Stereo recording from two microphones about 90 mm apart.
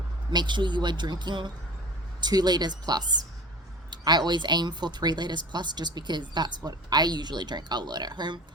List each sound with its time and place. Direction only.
0.3 s speech: 60° right (ahead or behind)